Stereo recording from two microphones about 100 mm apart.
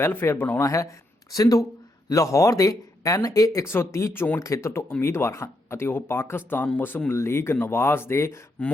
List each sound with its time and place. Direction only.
0.0 s speech: 25° left (ahead or behind)
0.6 s speech: 30° left (ahead or behind)
8.6 s speech: 15° left (ahead or behind)